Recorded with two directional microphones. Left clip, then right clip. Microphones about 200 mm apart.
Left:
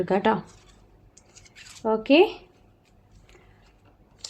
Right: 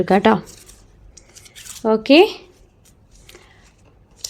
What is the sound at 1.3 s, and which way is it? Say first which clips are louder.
Scissors: right 8 dB; 30° right (ahead or behind).